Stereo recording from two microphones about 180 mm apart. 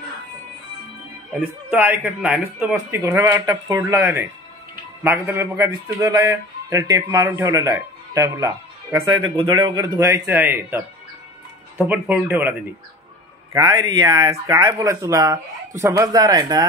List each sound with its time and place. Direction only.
1.4 s a man's voice: 10° right (ahead or behind)
11.8 s a man's voice: 10° right (ahead or behind)
13.5 s speech: 20° right (ahead or behind)